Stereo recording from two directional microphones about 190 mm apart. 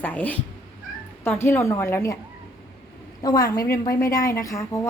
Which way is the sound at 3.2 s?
20° left (ahead or behind).